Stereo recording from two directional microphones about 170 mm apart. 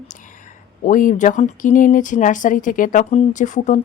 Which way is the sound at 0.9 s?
50° left (ahead or behind).